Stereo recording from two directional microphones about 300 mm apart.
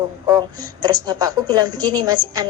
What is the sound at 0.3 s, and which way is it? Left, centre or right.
A woman's voice, centre.